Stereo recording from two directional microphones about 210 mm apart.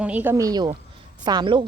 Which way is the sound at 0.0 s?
10° right (ahead or behind).